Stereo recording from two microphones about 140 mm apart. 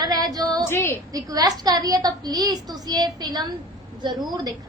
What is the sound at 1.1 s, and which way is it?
A woman's voice, 25° right (ahead or behind).